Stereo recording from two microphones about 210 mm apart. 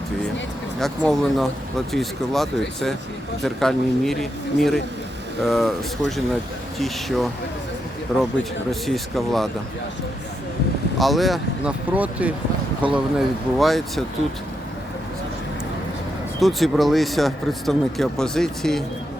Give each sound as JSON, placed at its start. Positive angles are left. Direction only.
{"t": 0.8, "sound": "speech", "side_deg": 0}
{"t": 8.7, "sound": "speech", "side_deg": 0}
{"t": 10.9, "sound": "speech", "side_deg": 0}
{"t": 16.4, "sound": "speech", "side_deg": 0}